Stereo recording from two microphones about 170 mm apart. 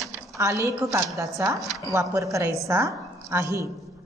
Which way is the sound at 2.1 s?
20° right (ahead or behind).